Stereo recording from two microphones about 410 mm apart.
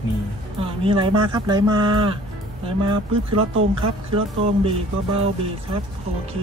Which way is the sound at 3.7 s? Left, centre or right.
Centre.